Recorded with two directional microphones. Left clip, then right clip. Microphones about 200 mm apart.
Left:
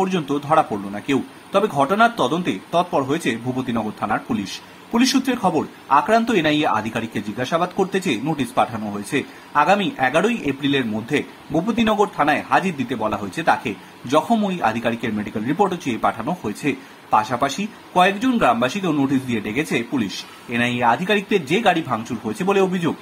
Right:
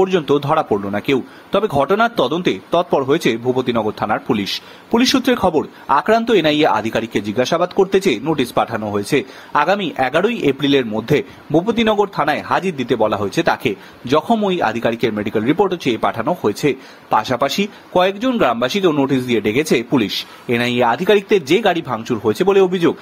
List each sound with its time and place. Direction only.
0.0 s speech: 35° right (ahead or behind)